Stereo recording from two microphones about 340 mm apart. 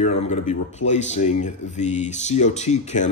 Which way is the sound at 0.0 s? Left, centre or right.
Centre.